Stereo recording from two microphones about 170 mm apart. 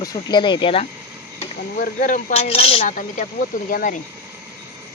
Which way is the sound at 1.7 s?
55° left (ahead or behind).